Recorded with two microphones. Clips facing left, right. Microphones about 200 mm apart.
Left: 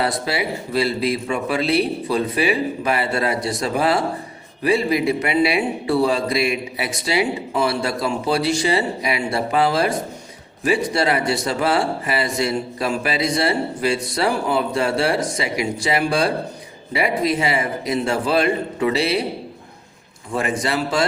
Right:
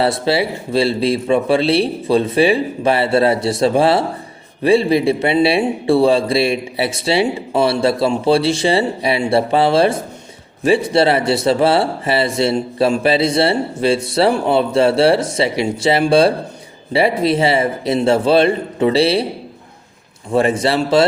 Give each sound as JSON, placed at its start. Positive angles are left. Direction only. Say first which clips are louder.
{"t": 0.0, "sound": "speech", "louder": "right 6 dB", "side_deg": -30}
{"t": 20.3, "sound": "speech", "louder": "right 7 dB", "side_deg": -30}